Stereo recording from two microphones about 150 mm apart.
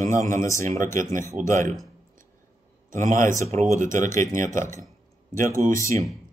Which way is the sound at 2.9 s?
60° right (ahead or behind).